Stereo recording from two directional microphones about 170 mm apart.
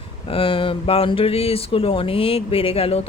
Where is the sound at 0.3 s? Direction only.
30° left (ahead or behind).